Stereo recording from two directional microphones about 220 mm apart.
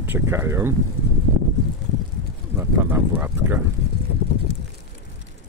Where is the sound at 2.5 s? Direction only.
10° right (ahead or behind).